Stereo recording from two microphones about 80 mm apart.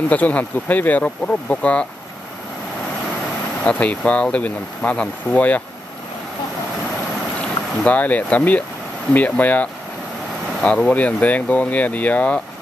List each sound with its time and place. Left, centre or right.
0.1 s speech: centre
3.6 s speech: centre
7.8 s speech: left